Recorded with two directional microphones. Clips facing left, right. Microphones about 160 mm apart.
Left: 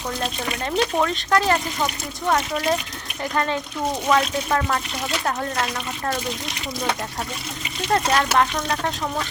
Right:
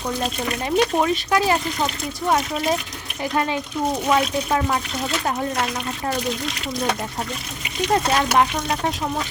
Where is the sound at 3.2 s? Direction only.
10° right (ahead or behind).